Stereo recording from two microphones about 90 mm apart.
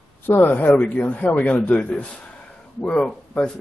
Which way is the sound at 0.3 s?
20° left (ahead or behind).